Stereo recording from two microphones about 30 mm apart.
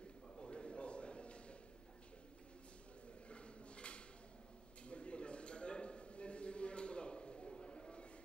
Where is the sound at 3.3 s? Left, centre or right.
Left.